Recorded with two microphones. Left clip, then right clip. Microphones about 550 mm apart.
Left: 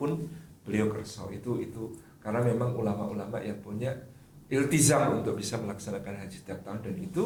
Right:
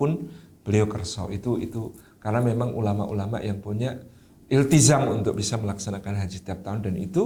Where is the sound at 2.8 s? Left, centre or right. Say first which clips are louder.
Right 4 dB; right.